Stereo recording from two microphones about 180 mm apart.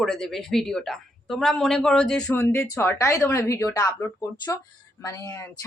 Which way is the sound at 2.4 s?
15° left (ahead or behind).